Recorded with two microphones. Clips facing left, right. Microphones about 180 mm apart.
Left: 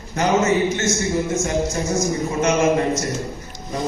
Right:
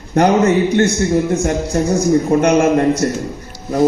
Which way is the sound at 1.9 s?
60° right (ahead or behind).